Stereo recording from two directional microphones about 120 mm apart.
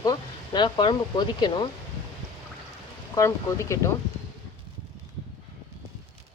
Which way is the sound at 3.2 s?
25° left (ahead or behind).